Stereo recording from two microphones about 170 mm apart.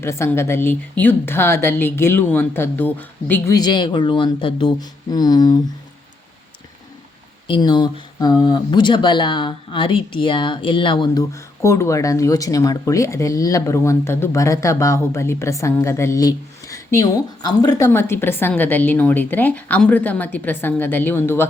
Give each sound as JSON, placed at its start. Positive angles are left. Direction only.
{"t": 0.0, "sound": "speech", "side_deg": 15}
{"t": 7.4, "sound": "speech", "side_deg": 30}